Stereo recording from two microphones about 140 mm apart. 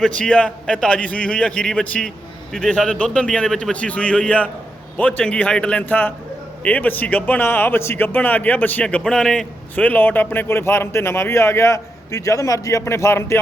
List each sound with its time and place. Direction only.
0.0 s a man's voice: 5° left (ahead or behind)